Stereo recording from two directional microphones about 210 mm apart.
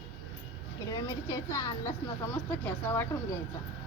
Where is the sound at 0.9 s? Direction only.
15° left (ahead or behind).